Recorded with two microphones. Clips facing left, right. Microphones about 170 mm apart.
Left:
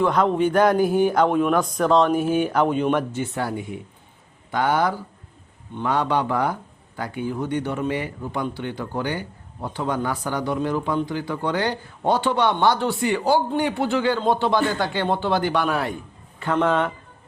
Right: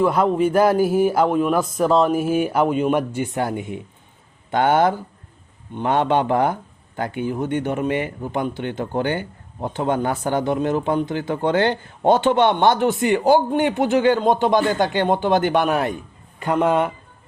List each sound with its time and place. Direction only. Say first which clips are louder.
0.0 s speech: right 2 dB; 5° right (ahead or behind)